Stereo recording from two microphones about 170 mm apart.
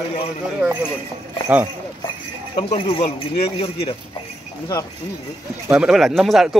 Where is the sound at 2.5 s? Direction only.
25° left (ahead or behind).